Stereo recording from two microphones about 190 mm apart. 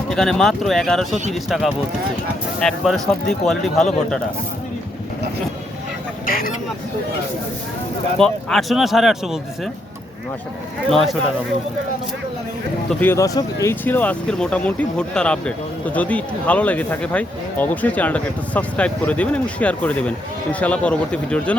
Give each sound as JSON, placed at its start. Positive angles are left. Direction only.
{"t": 0.1, "sound": "speech", "side_deg": 0}
{"t": 6.2, "sound": "speech", "side_deg": 50}
{"t": 8.2, "sound": "speech", "side_deg": 5}
{"t": 10.8, "sound": "speech", "side_deg": 0}
{"t": 13.0, "sound": "speech", "side_deg": 15}